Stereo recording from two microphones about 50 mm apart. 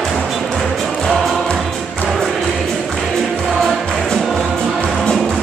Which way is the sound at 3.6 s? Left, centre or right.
Centre.